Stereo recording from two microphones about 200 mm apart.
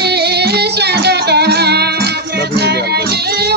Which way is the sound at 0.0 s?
55° right (ahead or behind).